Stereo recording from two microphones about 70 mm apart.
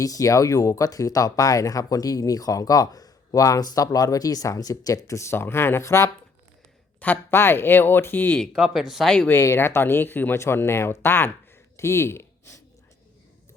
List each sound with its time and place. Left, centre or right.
0.0 s speech: left
7.0 s speech: left
8.4 s speech: centre
9.3 s speech: left
10.3 s speech: left